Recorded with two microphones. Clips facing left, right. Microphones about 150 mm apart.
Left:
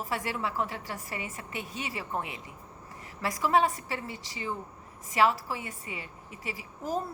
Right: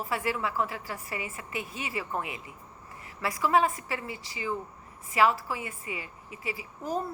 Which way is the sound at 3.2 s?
35° left (ahead or behind).